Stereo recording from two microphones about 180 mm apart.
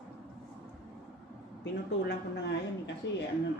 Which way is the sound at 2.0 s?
75° left (ahead or behind).